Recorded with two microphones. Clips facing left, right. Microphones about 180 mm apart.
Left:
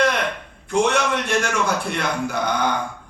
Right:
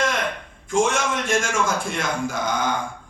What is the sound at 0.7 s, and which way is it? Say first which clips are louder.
Speech: left 1 dB; 65° left (ahead or behind).